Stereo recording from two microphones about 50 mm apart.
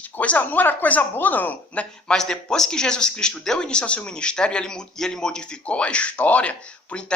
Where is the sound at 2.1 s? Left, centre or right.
Centre.